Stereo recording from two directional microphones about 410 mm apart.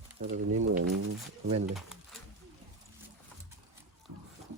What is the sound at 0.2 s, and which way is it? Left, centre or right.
Speech, centre.